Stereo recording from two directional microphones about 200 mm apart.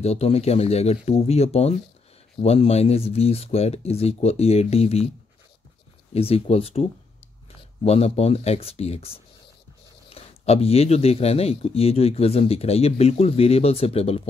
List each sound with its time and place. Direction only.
0.0 s speech: 30° left (ahead or behind)
6.1 s speech: 30° left (ahead or behind)